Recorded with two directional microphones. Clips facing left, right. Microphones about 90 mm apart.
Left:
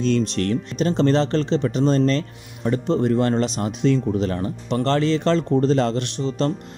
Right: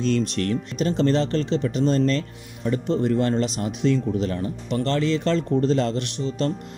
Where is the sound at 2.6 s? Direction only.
45° left (ahead or behind).